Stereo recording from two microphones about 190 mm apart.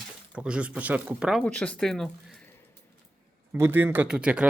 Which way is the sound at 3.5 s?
10° right (ahead or behind).